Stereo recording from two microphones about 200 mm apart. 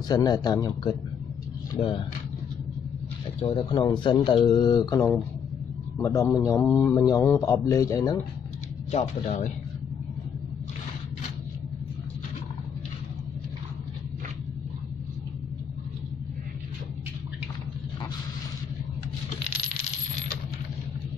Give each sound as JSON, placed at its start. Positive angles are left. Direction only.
{"t": 0.1, "sound": "speech", "side_deg": 20}
{"t": 3.4, "sound": "a man's voice", "side_deg": 25}
{"t": 8.9, "sound": "speech", "side_deg": 35}